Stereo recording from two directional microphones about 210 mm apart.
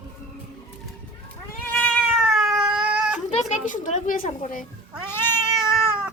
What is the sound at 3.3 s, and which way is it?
Speech, 35° left (ahead or behind).